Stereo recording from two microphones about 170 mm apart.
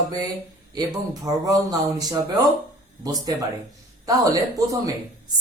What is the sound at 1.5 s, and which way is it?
Speech, 20° right (ahead or behind).